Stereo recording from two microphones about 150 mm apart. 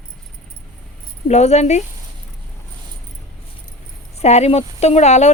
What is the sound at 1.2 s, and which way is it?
Speech, 45° left (ahead or behind).